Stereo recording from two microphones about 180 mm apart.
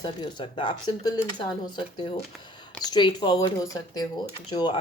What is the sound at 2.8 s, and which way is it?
Speech, 25° left (ahead or behind).